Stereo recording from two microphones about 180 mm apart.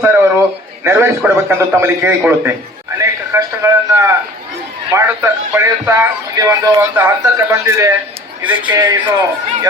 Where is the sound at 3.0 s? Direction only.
15° right (ahead or behind).